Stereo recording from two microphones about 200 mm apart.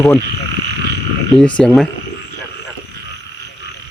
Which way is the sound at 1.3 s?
5° left (ahead or behind).